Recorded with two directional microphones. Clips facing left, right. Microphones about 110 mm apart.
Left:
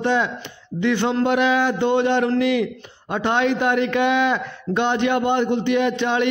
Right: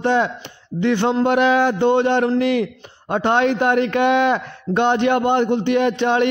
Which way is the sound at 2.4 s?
40° right (ahead or behind).